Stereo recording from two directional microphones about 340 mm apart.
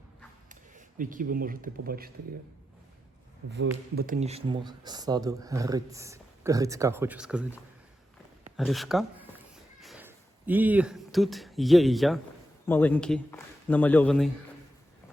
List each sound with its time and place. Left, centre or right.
0.4 s speech: right
3.9 s a man's voice: right; by 14.3 s centre